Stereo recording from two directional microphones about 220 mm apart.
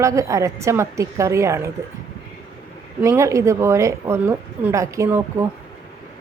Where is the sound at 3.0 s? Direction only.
15° right (ahead or behind).